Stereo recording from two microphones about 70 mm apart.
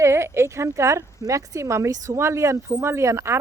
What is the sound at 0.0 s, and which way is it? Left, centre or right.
Speech, right.